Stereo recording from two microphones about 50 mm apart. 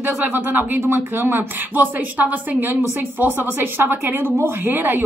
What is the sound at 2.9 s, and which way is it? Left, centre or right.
Speech, right.